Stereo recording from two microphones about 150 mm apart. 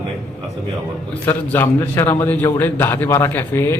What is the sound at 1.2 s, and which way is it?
A man's voice, 15° left (ahead or behind).